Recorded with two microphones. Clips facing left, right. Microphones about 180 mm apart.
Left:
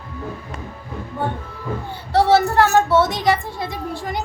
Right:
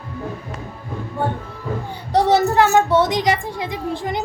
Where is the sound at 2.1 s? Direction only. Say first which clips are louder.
Even; 15° right (ahead or behind).